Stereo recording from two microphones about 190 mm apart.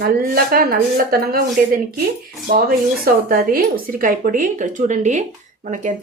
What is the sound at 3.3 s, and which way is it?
A woman's voice, 50° right (ahead or behind).